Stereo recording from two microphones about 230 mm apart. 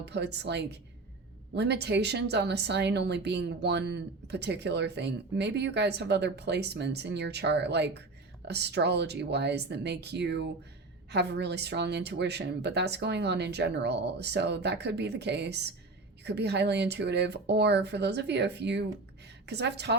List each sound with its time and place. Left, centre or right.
0.0 s a woman's voice: right